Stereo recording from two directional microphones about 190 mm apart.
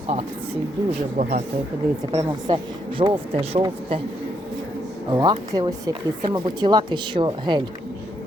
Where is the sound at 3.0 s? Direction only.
30° right (ahead or behind).